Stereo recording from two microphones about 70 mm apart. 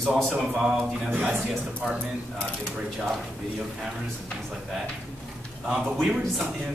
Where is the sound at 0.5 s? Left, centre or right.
Centre.